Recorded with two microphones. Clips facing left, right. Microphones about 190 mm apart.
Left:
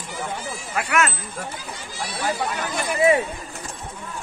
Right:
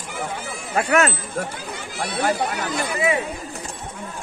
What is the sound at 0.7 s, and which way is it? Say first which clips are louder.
Speech: right 4 dB; 35° right (ahead or behind).